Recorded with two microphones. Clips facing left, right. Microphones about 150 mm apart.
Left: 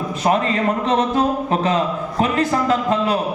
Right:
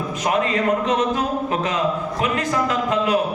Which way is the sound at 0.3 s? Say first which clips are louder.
Left 1 dB; 35° left (ahead or behind).